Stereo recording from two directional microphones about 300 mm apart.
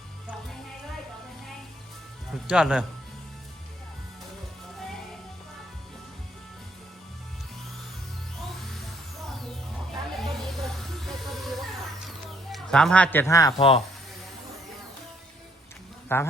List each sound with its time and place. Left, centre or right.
2.5 s speech: centre
10.2 s music: centre
11.9 s a sound: centre
13.6 s speech: centre
16.1 s speech: centre